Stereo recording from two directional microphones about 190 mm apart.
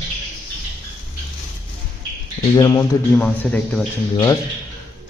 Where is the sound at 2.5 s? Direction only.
20° left (ahead or behind).